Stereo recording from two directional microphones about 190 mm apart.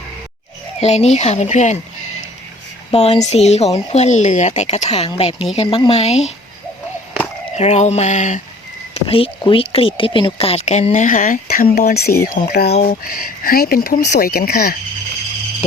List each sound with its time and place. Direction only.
0.8 s speech: 35° left (ahead or behind)
7.5 s speech: 35° left (ahead or behind); by 14.8 s 55° left (ahead or behind)